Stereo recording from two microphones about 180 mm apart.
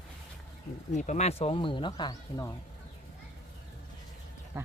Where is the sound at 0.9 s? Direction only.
40° left (ahead or behind); by 2.5 s 20° left (ahead or behind).